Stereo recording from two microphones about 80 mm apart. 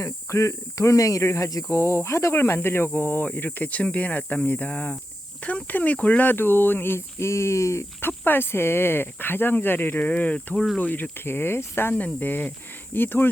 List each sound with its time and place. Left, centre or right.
0.0 s speech: left
8.2 s speech: left